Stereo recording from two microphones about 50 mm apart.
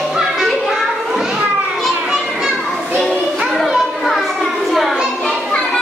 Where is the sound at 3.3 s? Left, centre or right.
Centre.